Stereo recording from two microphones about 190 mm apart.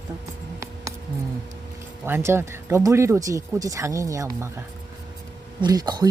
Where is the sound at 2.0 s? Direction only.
10° right (ahead or behind).